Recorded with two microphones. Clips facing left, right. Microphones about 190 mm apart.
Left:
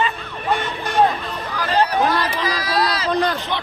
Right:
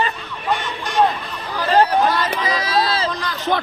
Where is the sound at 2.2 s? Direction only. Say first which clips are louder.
Right 1 dB; 25° right (ahead or behind).